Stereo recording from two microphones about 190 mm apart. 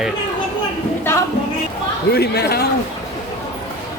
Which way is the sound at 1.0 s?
15° left (ahead or behind).